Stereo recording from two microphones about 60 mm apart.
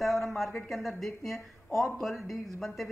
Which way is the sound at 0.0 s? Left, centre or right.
Centre.